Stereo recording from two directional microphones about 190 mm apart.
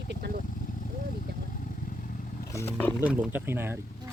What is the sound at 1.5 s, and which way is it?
Vehicle, 45° left (ahead or behind).